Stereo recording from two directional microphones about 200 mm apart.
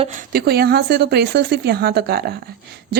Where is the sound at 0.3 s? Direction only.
50° right (ahead or behind).